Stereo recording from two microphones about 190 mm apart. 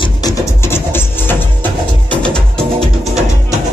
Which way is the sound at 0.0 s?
20° left (ahead or behind).